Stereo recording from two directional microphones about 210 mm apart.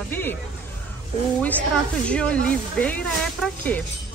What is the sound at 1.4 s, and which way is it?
Speech, 5° left (ahead or behind).